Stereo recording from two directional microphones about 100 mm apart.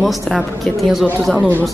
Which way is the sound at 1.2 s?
10° left (ahead or behind).